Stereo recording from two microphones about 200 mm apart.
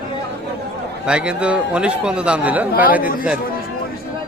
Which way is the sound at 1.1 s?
5° right (ahead or behind).